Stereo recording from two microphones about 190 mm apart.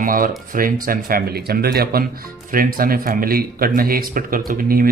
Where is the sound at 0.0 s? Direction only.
45° right (ahead or behind).